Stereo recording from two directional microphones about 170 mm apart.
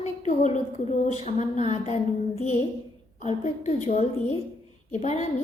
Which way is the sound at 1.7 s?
40° left (ahead or behind).